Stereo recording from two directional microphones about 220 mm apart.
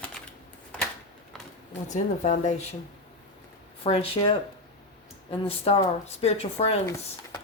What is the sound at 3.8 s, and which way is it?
Speech, 25° left (ahead or behind).